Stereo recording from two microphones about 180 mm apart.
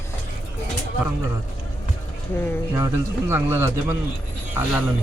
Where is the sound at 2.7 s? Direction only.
15° right (ahead or behind).